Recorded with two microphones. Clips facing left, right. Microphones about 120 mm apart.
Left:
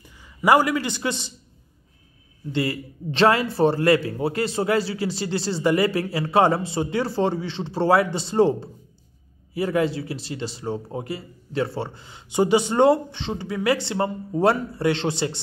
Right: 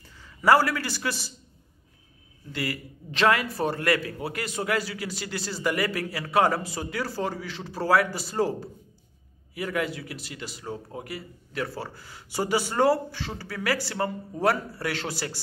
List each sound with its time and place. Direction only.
0.4 s a man's voice: 15° left (ahead or behind)
2.5 s a man's voice: 25° left (ahead or behind)